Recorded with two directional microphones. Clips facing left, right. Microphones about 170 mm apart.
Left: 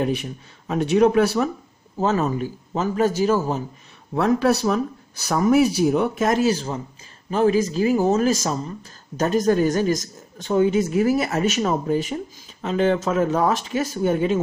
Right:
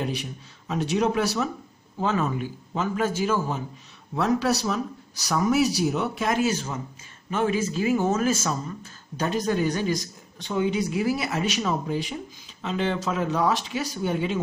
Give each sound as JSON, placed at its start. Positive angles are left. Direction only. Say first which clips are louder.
{"t": 0.0, "sound": "speech", "louder": "left 6 dB", "side_deg": 50}
{"t": 2.0, "sound": "a man's voice", "louder": "left 4 dB", "side_deg": 40}
{"t": 4.1, "sound": "a man's voice", "louder": "left 4 dB", "side_deg": 55}